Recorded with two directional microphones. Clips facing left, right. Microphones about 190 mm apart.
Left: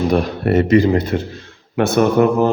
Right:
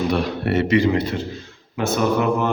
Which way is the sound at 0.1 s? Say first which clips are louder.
Left 5 dB; 45° left (ahead or behind).